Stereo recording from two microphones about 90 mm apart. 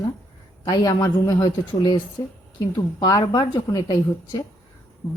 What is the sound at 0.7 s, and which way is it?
A woman's voice, 50° left (ahead or behind).